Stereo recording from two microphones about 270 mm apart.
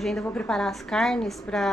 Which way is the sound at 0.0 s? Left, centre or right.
Centre.